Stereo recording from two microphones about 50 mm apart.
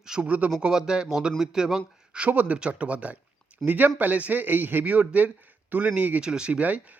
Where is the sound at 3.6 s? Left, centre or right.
Right.